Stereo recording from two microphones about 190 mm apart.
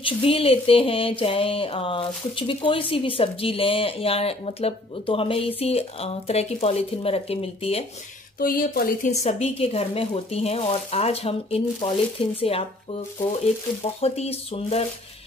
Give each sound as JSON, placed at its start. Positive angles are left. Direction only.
{"t": 0.0, "sound": "a sound", "side_deg": 30}
{"t": 5.6, "sound": "speech", "side_deg": 30}
{"t": 8.4, "sound": "speech", "side_deg": 50}
{"t": 9.2, "sound": "speech", "side_deg": 35}
{"t": 14.0, "sound": "speech", "side_deg": 35}